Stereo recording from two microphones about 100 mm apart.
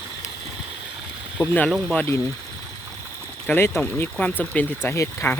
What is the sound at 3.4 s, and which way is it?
Speech, 25° left (ahead or behind).